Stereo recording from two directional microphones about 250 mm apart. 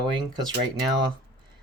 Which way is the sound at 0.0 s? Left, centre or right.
Centre.